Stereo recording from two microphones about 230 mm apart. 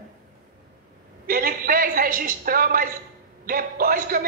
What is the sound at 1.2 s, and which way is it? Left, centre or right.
A woman's voice, right.